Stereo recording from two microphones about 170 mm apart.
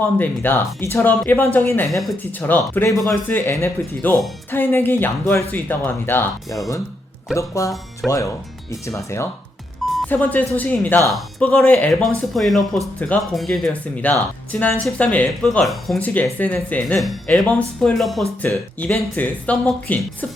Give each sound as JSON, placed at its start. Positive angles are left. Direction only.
{"t": 0.0, "sound": "speech", "side_deg": 10}
{"t": 1.9, "sound": "speech", "side_deg": 0}
{"t": 2.1, "sound": "speech", "side_deg": 10}
{"t": 8.0, "sound": "speech", "side_deg": 0}
{"t": 8.7, "sound": "speech", "side_deg": 15}
{"t": 18.4, "sound": "speech", "side_deg": 15}